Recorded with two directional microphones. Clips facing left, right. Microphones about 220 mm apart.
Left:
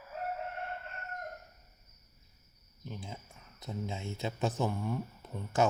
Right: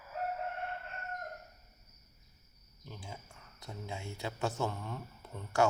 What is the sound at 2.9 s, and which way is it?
Speech, 20° left (ahead or behind).